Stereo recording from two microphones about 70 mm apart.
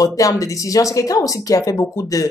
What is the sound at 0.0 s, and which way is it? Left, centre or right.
Speech, left.